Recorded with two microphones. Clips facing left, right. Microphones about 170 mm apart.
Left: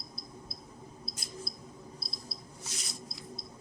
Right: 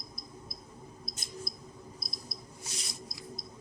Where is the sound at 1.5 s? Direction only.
30° left (ahead or behind).